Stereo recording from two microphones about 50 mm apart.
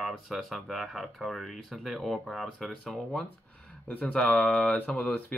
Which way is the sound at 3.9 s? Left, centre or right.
Left.